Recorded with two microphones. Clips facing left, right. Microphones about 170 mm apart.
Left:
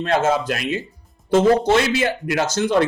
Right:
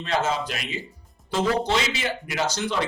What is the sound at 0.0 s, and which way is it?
Speech, 50° left (ahead or behind).